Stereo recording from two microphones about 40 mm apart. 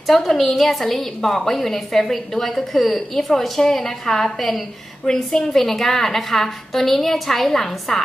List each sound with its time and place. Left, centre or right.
0.0 s a woman's voice: centre